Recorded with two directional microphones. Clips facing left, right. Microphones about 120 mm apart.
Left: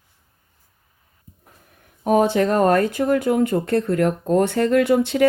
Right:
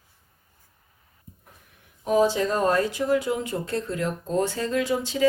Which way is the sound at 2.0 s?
60° left (ahead or behind).